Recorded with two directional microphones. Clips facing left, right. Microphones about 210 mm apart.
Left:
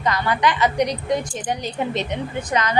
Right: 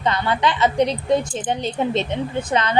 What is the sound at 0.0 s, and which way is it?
A woman's voice, 25° right (ahead or behind).